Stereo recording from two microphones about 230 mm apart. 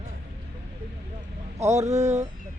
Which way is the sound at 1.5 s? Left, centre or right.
Right.